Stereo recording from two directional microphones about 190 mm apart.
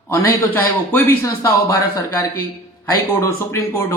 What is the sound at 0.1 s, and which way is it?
A man's voice, 10° left (ahead or behind).